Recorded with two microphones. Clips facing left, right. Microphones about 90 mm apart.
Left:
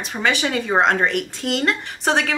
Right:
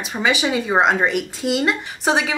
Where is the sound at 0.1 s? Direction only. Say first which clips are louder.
Right 1 dB; 5° right (ahead or behind).